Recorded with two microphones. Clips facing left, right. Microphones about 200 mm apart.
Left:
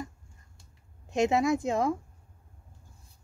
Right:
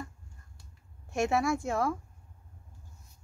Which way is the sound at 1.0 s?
20° left (ahead or behind).